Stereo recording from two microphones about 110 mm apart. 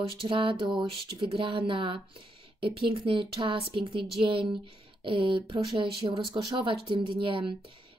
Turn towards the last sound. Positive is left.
turn(degrees=-50)  # may be behind; listen again after turning